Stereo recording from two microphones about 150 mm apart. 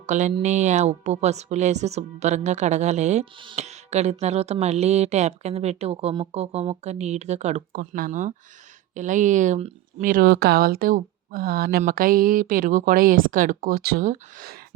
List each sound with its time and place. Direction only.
0.0 s speech: 50° right (ahead or behind)
7.7 s speech: 70° right (ahead or behind)
10.0 s speech: 75° right (ahead or behind); by 11.8 s 90° right
11.8 s speech: 70° right (ahead or behind)